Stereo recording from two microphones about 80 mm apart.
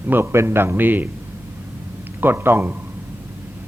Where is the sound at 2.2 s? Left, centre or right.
Right.